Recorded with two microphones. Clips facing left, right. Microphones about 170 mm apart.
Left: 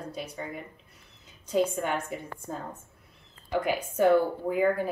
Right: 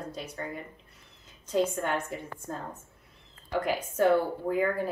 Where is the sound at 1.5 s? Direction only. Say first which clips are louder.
Left 1 dB; 5° left (ahead or behind).